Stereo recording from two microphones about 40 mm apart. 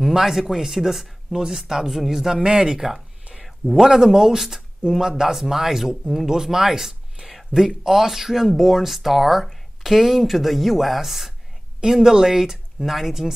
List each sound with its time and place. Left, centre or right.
0.0 s speech: centre
2.4 s speech: right
3.4 s a sound: centre
3.9 s speech: centre